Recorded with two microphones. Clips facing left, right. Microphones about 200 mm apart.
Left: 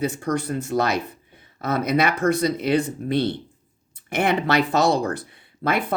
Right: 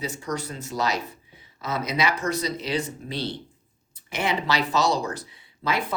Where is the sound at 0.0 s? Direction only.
55° left (ahead or behind).